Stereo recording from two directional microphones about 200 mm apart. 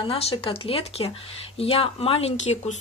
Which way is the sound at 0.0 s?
30° left (ahead or behind).